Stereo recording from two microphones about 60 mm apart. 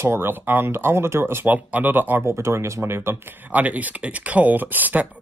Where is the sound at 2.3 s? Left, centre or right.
Right.